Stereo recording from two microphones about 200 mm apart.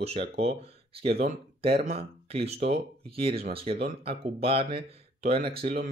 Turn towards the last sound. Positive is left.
turn(degrees=-30)  # may be behind; listen again after turning